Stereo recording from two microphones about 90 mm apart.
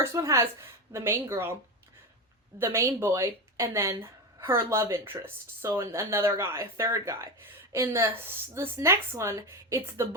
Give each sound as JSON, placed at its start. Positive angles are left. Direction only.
{"t": 0.0, "sound": "speech", "side_deg": -35}
{"t": 2.6, "sound": "a woman's voice", "side_deg": -30}